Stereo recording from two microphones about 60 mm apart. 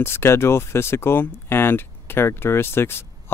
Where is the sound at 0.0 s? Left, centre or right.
Left.